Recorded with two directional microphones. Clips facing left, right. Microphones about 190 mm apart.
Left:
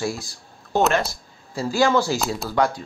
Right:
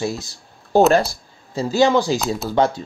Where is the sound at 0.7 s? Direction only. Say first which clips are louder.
Right 6 dB; 35° right (ahead or behind).